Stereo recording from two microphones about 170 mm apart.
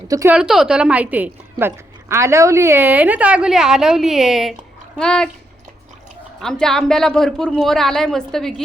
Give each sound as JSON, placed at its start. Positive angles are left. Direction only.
{"t": 0.1, "sound": "speech", "side_deg": -20}
{"t": 0.3, "sound": "a woman's voice", "side_deg": -5}
{"t": 6.4, "sound": "speech", "side_deg": 5}